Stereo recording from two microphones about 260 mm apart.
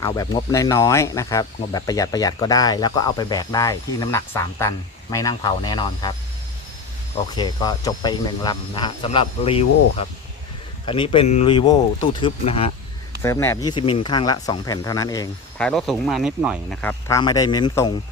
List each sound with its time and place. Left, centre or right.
0.0 s speech: centre
7.3 s speech: centre
13.2 s speech: centre
17.1 s speech: centre